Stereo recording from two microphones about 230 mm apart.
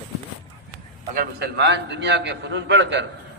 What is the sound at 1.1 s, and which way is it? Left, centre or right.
A man's voice, right.